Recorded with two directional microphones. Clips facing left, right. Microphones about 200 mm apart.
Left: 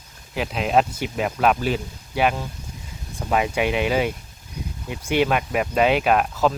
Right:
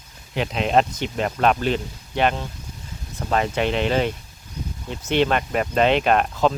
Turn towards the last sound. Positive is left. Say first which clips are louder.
# even
turn(degrees=5)  # may be behind; listen again after turning